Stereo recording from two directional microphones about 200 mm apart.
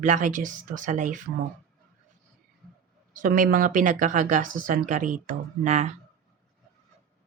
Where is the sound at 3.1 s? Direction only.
40° right (ahead or behind).